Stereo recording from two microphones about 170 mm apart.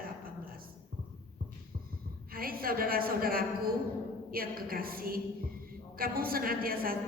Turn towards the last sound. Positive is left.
turn(degrees=-60)  # may be behind; listen again after turning